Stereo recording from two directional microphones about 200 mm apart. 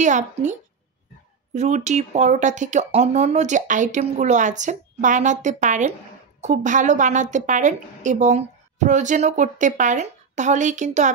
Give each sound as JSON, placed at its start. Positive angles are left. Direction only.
{"t": 0.0, "sound": "a woman's voice", "side_deg": -35}